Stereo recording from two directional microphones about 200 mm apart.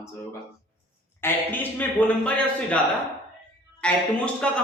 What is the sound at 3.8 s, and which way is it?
Speech, 5° left (ahead or behind).